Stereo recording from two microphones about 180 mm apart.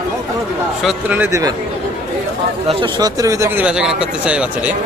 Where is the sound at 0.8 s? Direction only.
5° right (ahead or behind).